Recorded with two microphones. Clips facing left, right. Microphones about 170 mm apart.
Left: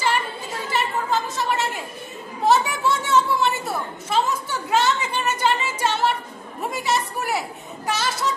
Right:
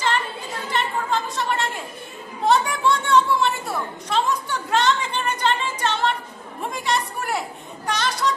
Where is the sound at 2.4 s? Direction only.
5° left (ahead or behind).